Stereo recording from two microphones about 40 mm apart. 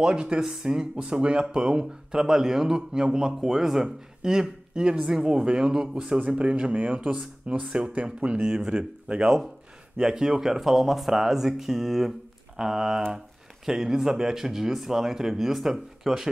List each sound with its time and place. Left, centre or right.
0.0 s speech: right
6.1 s speech: right; by 16.3 s centre